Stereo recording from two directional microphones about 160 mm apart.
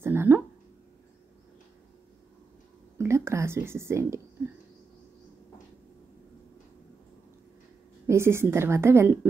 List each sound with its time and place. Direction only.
0.0 s a sound: 15° right (ahead or behind)
3.0 s speech: 15° right (ahead or behind)
8.1 s a woman's voice: 15° right (ahead or behind)